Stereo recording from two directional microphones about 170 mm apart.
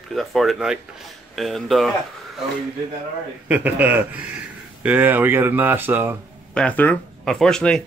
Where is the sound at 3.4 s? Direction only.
10° right (ahead or behind).